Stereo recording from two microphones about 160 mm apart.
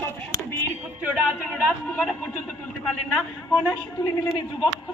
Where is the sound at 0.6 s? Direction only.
10° right (ahead or behind).